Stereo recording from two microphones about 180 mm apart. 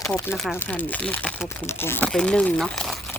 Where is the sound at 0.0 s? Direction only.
5° left (ahead or behind).